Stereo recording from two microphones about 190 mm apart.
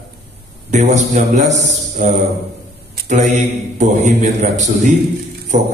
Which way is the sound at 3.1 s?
40° right (ahead or behind).